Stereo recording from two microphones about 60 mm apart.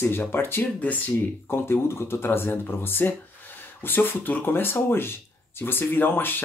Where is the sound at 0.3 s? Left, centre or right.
Left.